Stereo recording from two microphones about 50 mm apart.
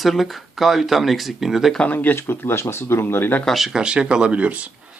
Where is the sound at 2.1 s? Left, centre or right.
Left.